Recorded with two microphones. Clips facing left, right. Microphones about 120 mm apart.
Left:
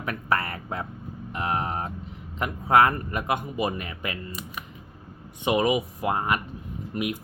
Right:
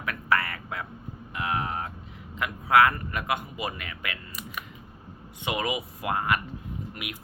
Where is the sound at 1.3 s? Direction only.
30° left (ahead or behind).